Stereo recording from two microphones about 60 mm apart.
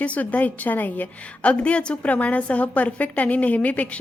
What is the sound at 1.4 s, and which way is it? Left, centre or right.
A woman's voice, centre.